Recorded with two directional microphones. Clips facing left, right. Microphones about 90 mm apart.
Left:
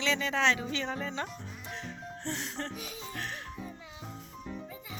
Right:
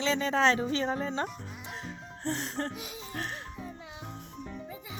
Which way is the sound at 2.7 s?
20° right (ahead or behind).